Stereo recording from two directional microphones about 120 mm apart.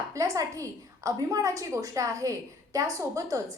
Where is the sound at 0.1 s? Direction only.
30° right (ahead or behind).